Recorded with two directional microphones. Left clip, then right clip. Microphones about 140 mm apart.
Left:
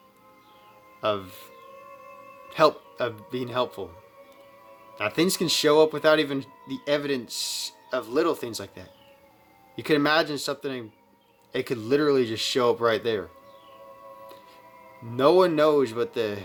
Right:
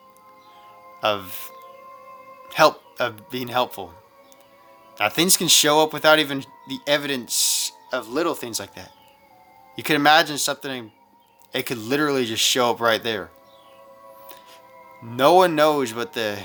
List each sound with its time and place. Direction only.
1.0 s speech: 10° right (ahead or behind)
4.9 s speech: 15° right (ahead or behind)
15.1 s speech: 10° right (ahead or behind)